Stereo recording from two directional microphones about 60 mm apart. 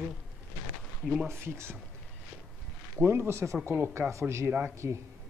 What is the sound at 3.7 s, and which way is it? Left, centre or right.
Speech, right.